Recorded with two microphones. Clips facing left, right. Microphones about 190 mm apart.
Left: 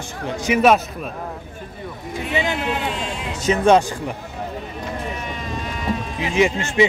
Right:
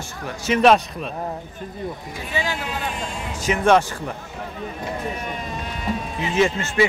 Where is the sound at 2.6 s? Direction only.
65° left (ahead or behind).